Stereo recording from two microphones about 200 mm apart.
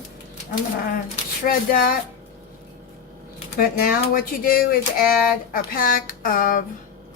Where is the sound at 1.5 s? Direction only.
45° left (ahead or behind).